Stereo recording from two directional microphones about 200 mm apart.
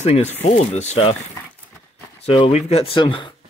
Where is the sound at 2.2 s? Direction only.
30° left (ahead or behind).